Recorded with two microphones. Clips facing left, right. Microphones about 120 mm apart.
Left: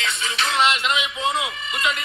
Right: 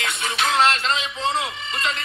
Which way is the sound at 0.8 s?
35° right (ahead or behind).